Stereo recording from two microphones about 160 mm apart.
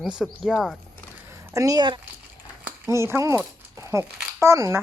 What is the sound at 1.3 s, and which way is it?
Speech, 20° right (ahead or behind).